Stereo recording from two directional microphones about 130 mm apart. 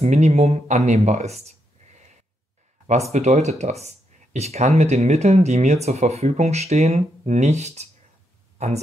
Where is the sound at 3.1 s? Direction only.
60° right (ahead or behind).